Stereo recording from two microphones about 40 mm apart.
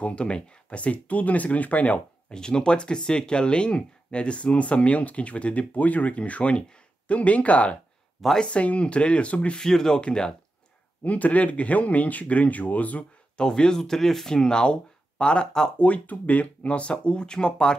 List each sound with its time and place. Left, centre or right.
0.0 s speech: left
2.3 s speech: centre
9.6 s speech: centre
11.1 s speech: left
13.4 s speech: centre
15.8 s speech: left